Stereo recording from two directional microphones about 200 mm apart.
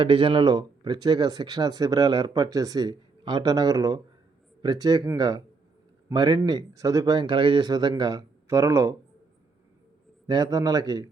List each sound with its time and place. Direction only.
0.0 s speech: 25° right (ahead or behind)
10.2 s speech: 20° right (ahead or behind)